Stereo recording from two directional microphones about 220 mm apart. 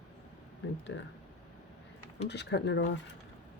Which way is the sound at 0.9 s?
55° left (ahead or behind).